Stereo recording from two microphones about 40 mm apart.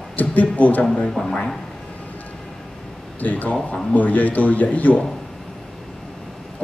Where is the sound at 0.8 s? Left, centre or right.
Left.